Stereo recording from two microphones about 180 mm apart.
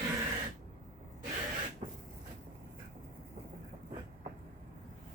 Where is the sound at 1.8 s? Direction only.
30° right (ahead or behind).